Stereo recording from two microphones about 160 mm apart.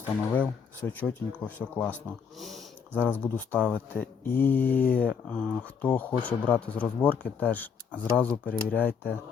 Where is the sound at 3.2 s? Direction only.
10° left (ahead or behind).